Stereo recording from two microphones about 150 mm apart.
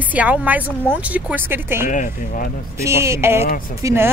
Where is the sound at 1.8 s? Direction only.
60° left (ahead or behind).